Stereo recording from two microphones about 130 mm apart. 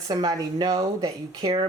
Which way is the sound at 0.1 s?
30° right (ahead or behind).